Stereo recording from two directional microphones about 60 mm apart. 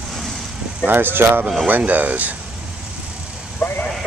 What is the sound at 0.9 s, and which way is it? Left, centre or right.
Speech, right.